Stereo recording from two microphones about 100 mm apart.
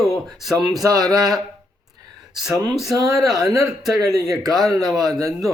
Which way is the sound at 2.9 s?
35° right (ahead or behind).